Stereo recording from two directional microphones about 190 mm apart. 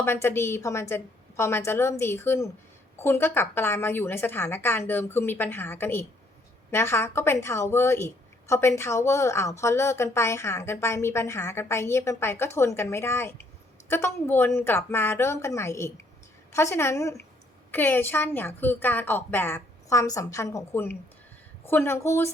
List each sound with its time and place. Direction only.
0.0 s a woman's voice: 10° left (ahead or behind)